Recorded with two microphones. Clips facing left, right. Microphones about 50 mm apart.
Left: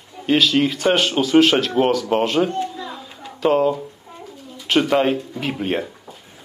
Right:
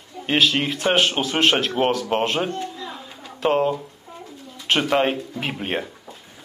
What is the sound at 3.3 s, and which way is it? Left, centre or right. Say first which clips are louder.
Speech: left 3 dB; centre.